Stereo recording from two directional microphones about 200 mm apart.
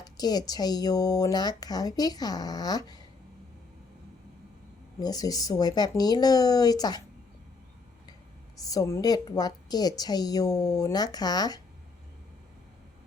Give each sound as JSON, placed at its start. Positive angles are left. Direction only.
{"t": 0.0, "sound": "speech", "side_deg": 20}
{"t": 4.9, "sound": "speech", "side_deg": 20}
{"t": 8.6, "sound": "speech", "side_deg": 20}